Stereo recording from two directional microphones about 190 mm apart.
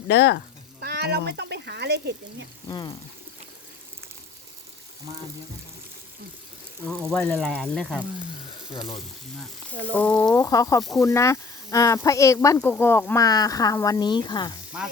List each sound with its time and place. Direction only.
0.1 s speech: 60° left (ahead or behind)
0.8 s speech: 55° right (ahead or behind)
2.6 s speech: 20° left (ahead or behind)
6.8 s speech: 5° left (ahead or behind)
9.9 s speech: 10° left (ahead or behind)
10.3 s speech: 20° left (ahead or behind)
14.7 s speech: 5° right (ahead or behind)